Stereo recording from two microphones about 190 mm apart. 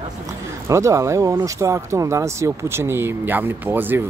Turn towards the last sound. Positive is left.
turn(degrees=-10)  # may be behind; listen again after turning